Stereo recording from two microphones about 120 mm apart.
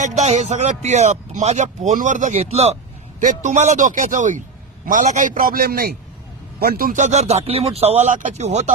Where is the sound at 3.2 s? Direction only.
85° right.